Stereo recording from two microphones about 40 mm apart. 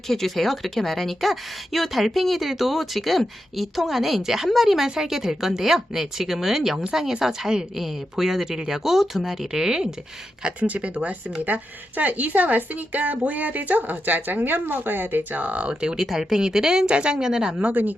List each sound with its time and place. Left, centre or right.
0.1 s a woman's voice: centre
10.6 s a woman's voice: right
15.8 s a woman's voice: centre
17.2 s a woman's voice: centre
17.6 s speech: right